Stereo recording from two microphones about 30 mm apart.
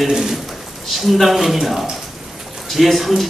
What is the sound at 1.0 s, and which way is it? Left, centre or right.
Speech, centre.